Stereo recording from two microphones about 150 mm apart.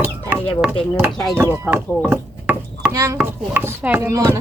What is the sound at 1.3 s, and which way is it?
Chopping, 15° right (ahead or behind).